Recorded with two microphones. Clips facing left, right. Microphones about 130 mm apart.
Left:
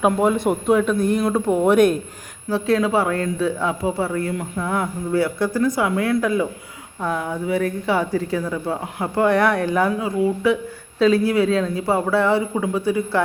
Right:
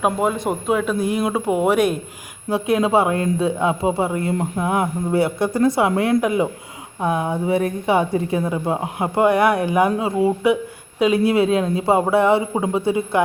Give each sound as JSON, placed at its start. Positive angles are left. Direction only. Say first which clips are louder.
{"t": 0.0, "sound": "speech", "louder": "left 2 dB", "side_deg": 0}
{"t": 2.5, "sound": "a woman's voice", "louder": "right 1 dB", "side_deg": -20}
{"t": 10.2, "sound": "a woman's voice", "louder": "right 1 dB", "side_deg": -30}